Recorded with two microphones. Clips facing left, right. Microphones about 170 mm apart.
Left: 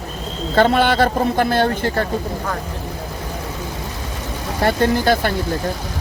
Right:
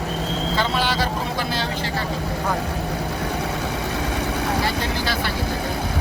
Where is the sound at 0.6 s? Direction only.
55° left (ahead or behind).